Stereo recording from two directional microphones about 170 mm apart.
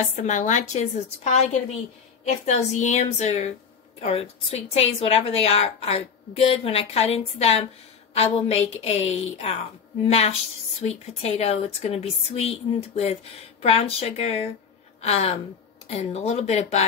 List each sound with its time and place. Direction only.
0.1 s a woman's voice: 45° left (ahead or behind)